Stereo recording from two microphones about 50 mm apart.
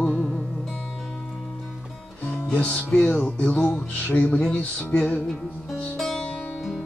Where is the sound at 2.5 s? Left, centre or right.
Left.